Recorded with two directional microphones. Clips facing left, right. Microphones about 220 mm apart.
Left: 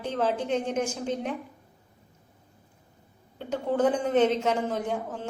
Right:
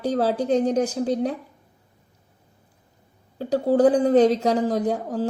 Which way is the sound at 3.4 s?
35° right (ahead or behind).